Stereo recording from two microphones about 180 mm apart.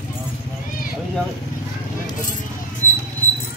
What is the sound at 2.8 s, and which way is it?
Rodents, 45° left (ahead or behind).